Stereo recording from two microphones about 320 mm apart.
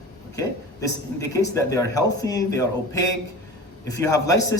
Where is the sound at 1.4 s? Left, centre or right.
Centre.